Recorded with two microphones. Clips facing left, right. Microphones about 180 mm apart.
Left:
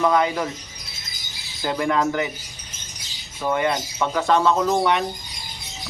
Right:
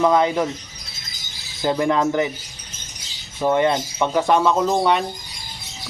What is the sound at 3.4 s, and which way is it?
Speech, 25° right (ahead or behind).